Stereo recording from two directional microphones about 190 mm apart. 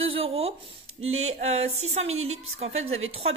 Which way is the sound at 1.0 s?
90° right.